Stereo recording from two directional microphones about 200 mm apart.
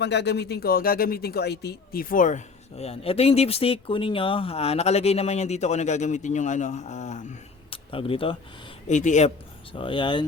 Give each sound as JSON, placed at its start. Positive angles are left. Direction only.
{"t": 0.0, "sound": "speech", "side_deg": 60}
{"t": 8.9, "sound": "speech", "side_deg": 35}
{"t": 9.7, "sound": "speech", "side_deg": 25}